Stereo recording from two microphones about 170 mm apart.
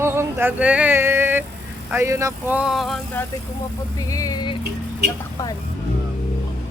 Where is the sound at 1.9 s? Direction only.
15° right (ahead or behind); by 3.0 s centre (ahead or behind).